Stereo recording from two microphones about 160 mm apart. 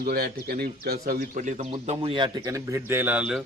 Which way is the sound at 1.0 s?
55° right (ahead or behind).